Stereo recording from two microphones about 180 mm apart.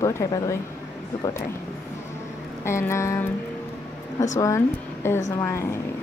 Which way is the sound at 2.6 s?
15° left (ahead or behind).